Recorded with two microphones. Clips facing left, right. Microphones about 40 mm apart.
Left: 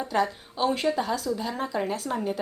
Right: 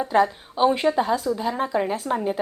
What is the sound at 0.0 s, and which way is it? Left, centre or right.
A woman's voice, centre.